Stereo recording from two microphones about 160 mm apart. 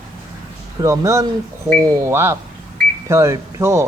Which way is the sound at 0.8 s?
20° right (ahead or behind).